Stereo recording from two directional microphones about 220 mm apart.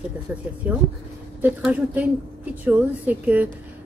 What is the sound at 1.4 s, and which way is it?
A woman's voice, 5° right (ahead or behind).